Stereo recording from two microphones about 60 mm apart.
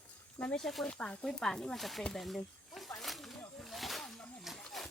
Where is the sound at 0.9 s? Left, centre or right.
Centre.